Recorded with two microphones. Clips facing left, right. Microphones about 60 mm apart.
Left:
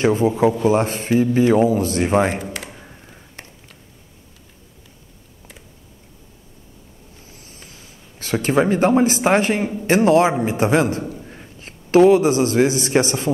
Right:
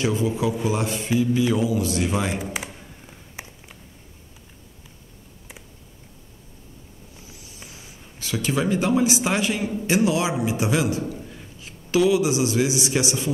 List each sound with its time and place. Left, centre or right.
0.0 s speech: left
7.2 s vehicle: left
8.2 s a man's voice: left